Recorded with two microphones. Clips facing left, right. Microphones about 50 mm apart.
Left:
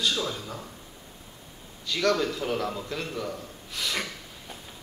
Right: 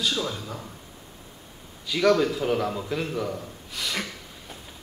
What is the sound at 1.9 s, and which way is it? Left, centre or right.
A man's voice, centre.